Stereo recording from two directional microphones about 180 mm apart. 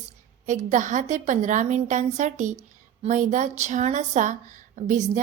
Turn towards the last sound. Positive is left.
turn(degrees=-45)  # may be behind; listen again after turning